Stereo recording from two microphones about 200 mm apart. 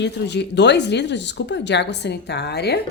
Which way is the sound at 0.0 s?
60° left (ahead or behind).